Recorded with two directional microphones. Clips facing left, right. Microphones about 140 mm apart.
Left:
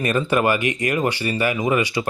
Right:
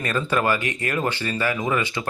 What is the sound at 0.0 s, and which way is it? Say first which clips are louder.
Speech: left 4 dB; 15° left (ahead or behind).